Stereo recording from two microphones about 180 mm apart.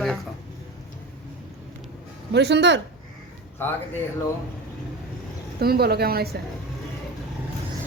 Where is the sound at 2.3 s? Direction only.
70° right (ahead or behind).